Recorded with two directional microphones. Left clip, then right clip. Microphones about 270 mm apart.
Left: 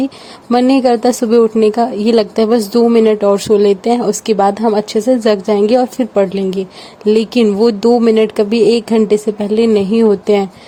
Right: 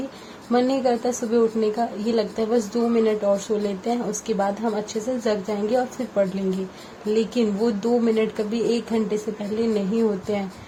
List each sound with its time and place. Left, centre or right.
0.5 s a woman's voice: left